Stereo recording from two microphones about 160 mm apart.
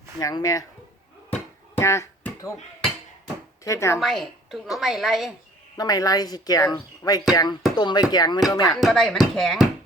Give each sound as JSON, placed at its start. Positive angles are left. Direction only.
{"t": 0.2, "sound": "speech", "side_deg": 20}
{"t": 1.8, "sound": "a sound", "side_deg": 15}
{"t": 3.6, "sound": "speech", "side_deg": 20}
{"t": 4.0, "sound": "a woman's voice", "side_deg": 0}
{"t": 5.7, "sound": "speech", "side_deg": 25}
{"t": 8.8, "sound": "a woman's voice", "side_deg": 0}